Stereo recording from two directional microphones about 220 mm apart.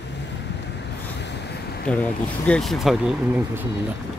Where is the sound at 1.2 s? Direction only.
50° left (ahead or behind).